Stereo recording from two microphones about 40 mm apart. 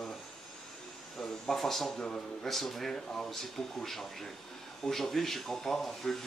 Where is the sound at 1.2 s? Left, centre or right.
Centre.